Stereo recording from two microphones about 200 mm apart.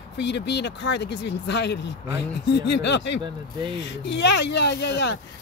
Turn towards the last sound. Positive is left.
turn(degrees=60)  # may be behind; listen again after turning